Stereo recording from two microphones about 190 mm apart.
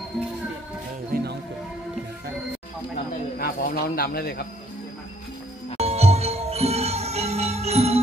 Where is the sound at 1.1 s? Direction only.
50° right (ahead or behind).